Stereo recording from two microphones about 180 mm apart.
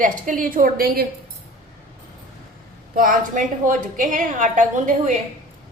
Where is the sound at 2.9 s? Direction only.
50° right (ahead or behind).